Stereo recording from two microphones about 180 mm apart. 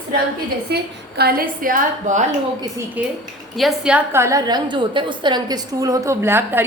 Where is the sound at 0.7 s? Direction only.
60° right (ahead or behind); by 2.2 s 45° right (ahead or behind).